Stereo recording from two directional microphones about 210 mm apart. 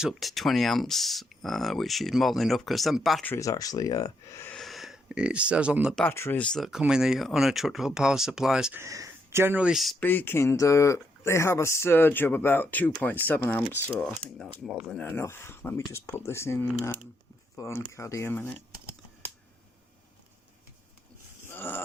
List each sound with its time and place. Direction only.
0.0 s speech: centre (ahead or behind)
3.3 s speech: 15° left (ahead or behind)
4.5 s speech: centre (ahead or behind)
6.1 s speech: 10° left (ahead or behind)
21.4 s a sound: 10° left (ahead or behind)